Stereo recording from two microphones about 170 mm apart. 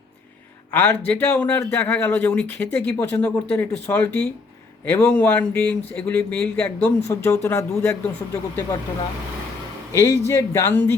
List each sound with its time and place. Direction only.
0.7 s speech: 10° left (ahead or behind)
9.9 s speech: 20° left (ahead or behind)